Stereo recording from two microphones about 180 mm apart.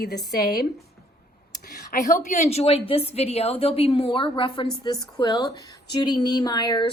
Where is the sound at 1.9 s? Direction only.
40° left (ahead or behind).